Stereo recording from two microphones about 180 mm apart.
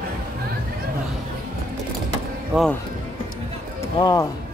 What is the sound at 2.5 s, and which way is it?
Speech, 5° right (ahead or behind).